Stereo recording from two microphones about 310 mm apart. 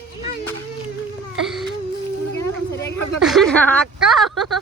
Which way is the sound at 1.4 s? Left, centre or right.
Centre.